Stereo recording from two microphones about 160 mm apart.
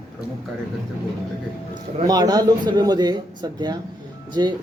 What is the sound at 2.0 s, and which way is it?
Speech, 25° right (ahead or behind).